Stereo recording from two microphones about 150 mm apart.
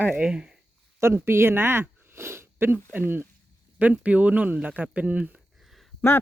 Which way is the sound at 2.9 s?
15° right (ahead or behind).